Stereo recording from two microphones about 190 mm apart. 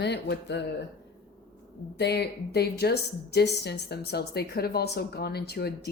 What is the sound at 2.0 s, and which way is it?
A woman's voice, 60° left (ahead or behind).